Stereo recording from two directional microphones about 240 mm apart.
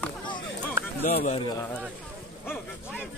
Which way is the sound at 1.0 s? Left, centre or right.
Left.